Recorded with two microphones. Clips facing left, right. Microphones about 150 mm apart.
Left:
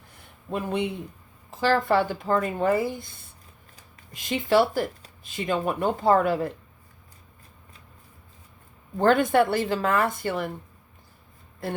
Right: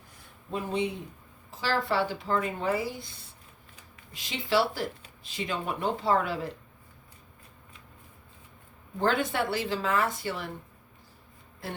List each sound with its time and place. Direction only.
0.5 s a man's voice: 55° left (ahead or behind)
9.0 s speech: 50° left (ahead or behind)